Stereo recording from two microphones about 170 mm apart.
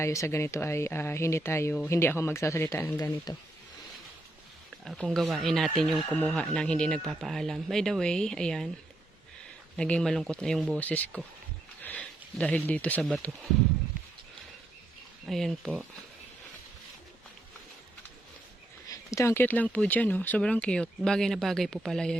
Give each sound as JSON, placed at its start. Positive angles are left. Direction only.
{"t": 0.0, "sound": "speech", "side_deg": 15}
{"t": 4.9, "sound": "speech", "side_deg": 0}
{"t": 9.7, "sound": "speech", "side_deg": 5}
{"t": 15.3, "sound": "speech", "side_deg": 0}
{"t": 18.9, "sound": "speech", "side_deg": 15}